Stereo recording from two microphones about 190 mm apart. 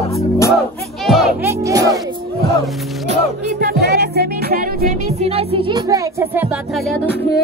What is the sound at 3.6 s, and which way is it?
Music, 55° right (ahead or behind).